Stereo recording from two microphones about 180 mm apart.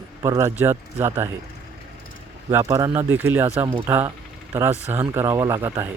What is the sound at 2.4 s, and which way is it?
Speech, 20° right (ahead or behind).